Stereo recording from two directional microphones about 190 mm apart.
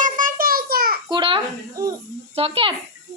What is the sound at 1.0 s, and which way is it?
Speech, 25° right (ahead or behind).